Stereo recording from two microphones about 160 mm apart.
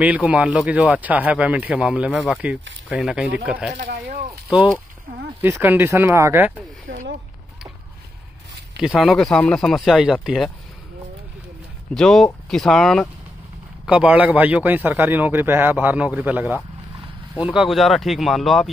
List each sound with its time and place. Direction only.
0.0 s speech: 10° right (ahead or behind)
3.7 s speech: 90° right
4.5 s speech: 5° right (ahead or behind)
8.7 s speech: centre (ahead or behind)
11.9 s speech: centre (ahead or behind)
13.8 s speech: 10° right (ahead or behind)